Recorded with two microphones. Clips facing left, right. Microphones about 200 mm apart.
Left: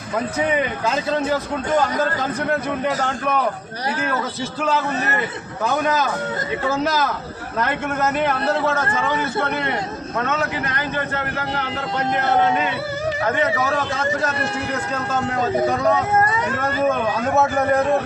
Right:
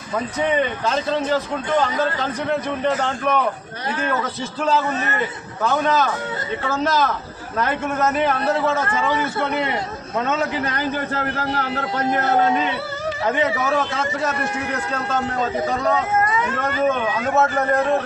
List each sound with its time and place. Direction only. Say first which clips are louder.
0.5 s speech: right 1 dB; 10° left (ahead or behind)
2.5 s a man's voice: right 2 dB; 5° left (ahead or behind)
6.7 s a man's voice: right 1 dB; 5° left (ahead or behind)
16.2 s speech: even; 35° left (ahead or behind)